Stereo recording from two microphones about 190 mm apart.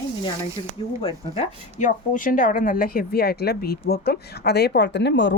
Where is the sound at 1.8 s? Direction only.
45° left (ahead or behind).